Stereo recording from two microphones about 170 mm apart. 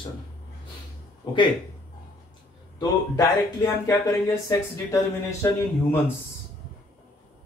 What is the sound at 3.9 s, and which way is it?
Speech, 20° left (ahead or behind).